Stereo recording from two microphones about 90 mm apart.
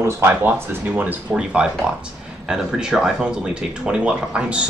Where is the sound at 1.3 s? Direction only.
10° right (ahead or behind).